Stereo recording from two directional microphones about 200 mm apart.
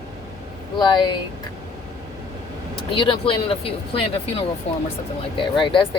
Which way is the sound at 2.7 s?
25° left (ahead or behind).